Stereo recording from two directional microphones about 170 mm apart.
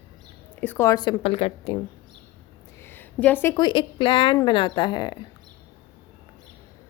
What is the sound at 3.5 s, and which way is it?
A woman's voice, 25° left (ahead or behind).